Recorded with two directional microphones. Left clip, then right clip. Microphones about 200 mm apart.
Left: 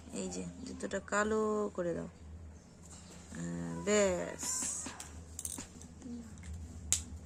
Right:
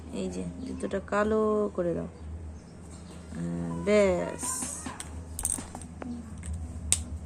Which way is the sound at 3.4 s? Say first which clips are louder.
Right 7 dB; 10° left (ahead or behind).